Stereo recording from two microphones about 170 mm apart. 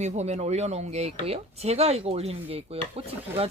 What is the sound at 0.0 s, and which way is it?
Speech, 40° right (ahead or behind).